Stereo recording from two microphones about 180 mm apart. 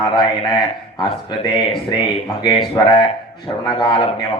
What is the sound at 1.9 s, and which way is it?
Speech, 25° left (ahead or behind).